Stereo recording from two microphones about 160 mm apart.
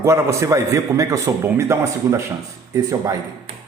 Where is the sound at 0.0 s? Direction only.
15° right (ahead or behind).